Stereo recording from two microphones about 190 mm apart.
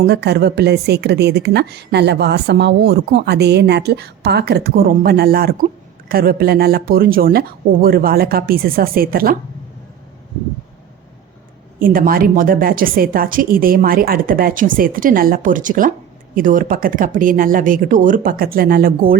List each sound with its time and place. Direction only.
0.0 s a woman's voice: 60° right (ahead or behind)
11.8 s a woman's voice: 50° right (ahead or behind)